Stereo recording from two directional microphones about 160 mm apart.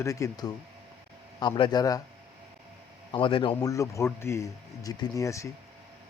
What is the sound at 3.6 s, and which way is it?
Speech, 20° left (ahead or behind).